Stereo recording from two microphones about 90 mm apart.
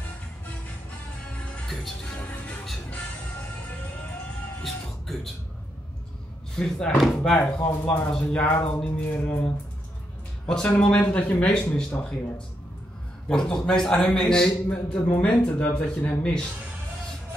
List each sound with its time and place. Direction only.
1.2 s music: 15° left (ahead or behind)
4.6 s music: 5° left (ahead or behind)
6.5 s speech: 10° left (ahead or behind)
7.3 s speech: 20° left (ahead or behind)
13.3 s speech: 5° left (ahead or behind)